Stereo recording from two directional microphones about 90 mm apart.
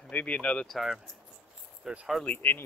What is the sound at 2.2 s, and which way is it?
Speech, 20° left (ahead or behind).